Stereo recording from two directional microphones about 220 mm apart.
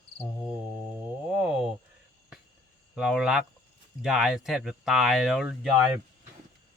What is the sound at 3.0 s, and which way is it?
Speech, 5° right (ahead or behind).